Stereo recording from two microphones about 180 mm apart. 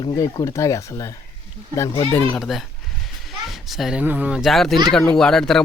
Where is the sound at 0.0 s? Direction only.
20° left (ahead or behind).